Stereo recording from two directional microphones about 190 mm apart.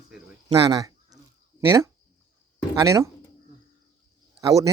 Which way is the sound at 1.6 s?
15° right (ahead or behind).